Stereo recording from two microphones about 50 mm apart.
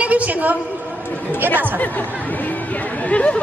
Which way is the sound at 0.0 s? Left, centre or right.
Right.